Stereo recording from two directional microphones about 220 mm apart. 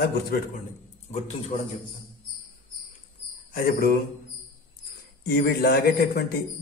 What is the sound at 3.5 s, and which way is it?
Speech, 40° left (ahead or behind).